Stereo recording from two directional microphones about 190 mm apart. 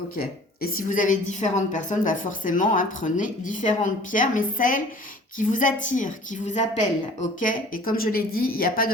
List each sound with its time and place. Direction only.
0.2 s a woman's voice: 50° left (ahead or behind)